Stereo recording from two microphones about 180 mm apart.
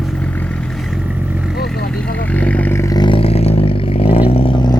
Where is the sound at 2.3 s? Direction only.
10° left (ahead or behind).